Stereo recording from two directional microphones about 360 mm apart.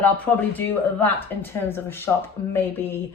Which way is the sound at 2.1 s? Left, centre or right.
Centre.